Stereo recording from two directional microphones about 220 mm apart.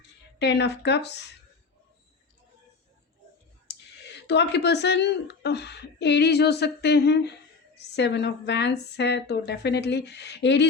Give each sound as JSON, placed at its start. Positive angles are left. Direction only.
{"t": 0.3, "sound": "speech", "side_deg": 50}
{"t": 3.7, "sound": "speech", "side_deg": 50}